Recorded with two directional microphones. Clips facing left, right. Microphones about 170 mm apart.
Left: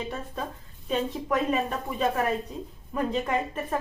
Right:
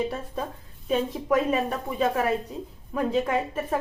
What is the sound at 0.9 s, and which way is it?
Speech, 10° right (ahead or behind).